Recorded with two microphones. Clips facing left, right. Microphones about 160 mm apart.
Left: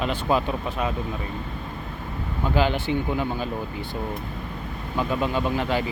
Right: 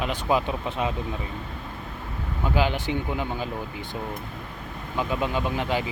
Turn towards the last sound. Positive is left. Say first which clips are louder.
# left 2 dB
turn(degrees=-15)  # may be behind; listen again after turning